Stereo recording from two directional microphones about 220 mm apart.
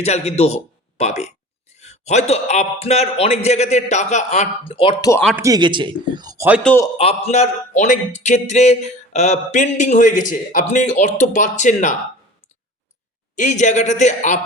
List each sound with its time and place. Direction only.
0.0 s a man's voice: 30° left (ahead or behind)
5.4 s a man's voice: 15° right (ahead or behind)
6.6 s a man's voice: 5° left (ahead or behind)
6.9 s speech: 30° left (ahead or behind)
13.3 s speech: 35° left (ahead or behind)